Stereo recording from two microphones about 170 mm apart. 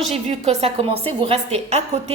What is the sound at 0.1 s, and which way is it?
A woman's voice, 35° right (ahead or behind).